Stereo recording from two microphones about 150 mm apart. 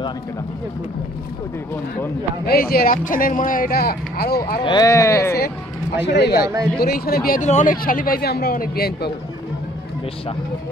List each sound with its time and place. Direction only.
2.4 s speech: 85° left
4.6 s speech: 30° left (ahead or behind)
4.8 s speech: 20° left (ahead or behind)
6.2 s speech: 90° left
7.4 s speech: 60° left (ahead or behind); by 9.1 s 90° left